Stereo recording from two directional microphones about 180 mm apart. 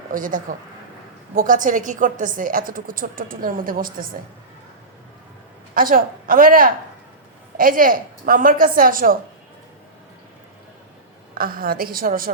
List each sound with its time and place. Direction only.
0.1 s a woman's voice: 50° right (ahead or behind)
5.7 s a woman's voice: 50° right (ahead or behind)
11.3 s a woman's voice: 55° right (ahead or behind)